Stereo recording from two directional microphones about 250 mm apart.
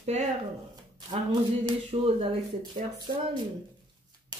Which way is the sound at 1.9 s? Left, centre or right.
Right.